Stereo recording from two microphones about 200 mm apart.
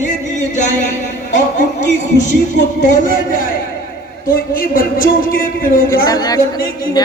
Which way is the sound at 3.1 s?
45° left (ahead or behind).